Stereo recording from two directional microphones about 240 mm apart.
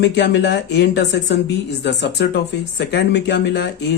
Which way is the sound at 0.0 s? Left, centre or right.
Left.